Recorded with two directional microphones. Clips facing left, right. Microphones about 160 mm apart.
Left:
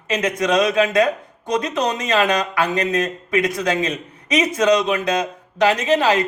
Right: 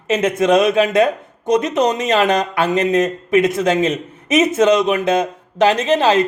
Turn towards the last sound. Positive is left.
turn(degrees=-25)  # may be behind; listen again after turning